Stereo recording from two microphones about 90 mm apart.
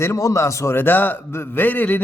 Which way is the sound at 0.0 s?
35° left (ahead or behind).